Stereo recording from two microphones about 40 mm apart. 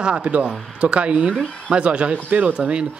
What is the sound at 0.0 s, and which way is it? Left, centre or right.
Speech, right.